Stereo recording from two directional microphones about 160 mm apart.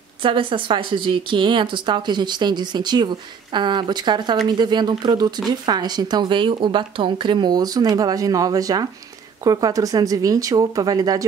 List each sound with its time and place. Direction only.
0.2 s a woman's voice: 35° right (ahead or behind)